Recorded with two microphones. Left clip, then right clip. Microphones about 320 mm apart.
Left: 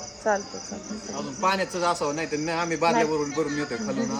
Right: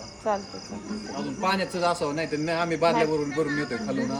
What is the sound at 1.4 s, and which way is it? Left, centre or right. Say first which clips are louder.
Speech: left 1 dB; centre.